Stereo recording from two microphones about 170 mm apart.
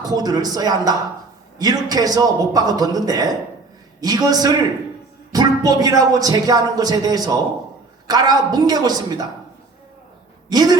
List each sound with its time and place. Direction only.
0.0 s a man's voice: 25° right (ahead or behind)
10.5 s a man's voice: 25° right (ahead or behind)